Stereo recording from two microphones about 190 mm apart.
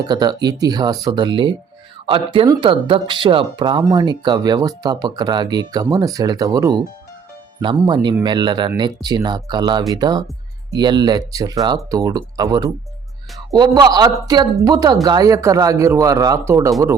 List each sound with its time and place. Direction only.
0.0 s speech: 20° right (ahead or behind)